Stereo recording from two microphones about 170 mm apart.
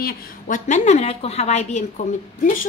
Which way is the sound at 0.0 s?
50° left (ahead or behind).